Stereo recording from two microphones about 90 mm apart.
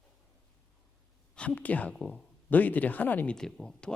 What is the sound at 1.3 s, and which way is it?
Speech, 15° left (ahead or behind).